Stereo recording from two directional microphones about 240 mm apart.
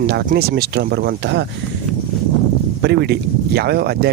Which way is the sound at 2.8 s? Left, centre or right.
Right.